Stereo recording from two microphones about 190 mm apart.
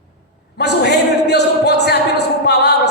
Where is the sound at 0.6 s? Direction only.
60° left (ahead or behind).